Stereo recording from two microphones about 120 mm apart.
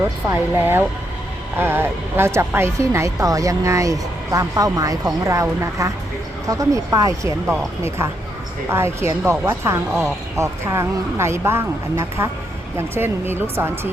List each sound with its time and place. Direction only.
0.3 s speech: 15° right (ahead or behind)
7.4 s speech: 5° right (ahead or behind)
7.9 s speech: 20° right (ahead or behind)